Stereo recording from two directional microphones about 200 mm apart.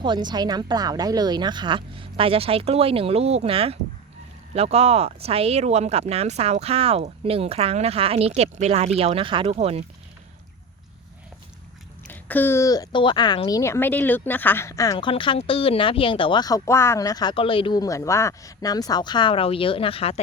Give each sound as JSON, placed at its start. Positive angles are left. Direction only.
{"t": 0.0, "sound": "speech", "side_deg": -20}
{"t": 12.0, "sound": "a woman's voice", "side_deg": 10}